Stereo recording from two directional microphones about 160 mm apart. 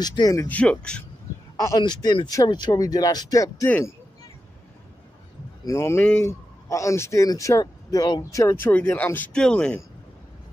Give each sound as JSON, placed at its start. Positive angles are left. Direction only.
{"t": 0.0, "sound": "speech", "side_deg": 25}
{"t": 0.5, "sound": "speech", "side_deg": 5}
{"t": 1.6, "sound": "speech", "side_deg": 25}
{"t": 5.7, "sound": "speech", "side_deg": 15}
{"t": 8.7, "sound": "speech", "side_deg": 10}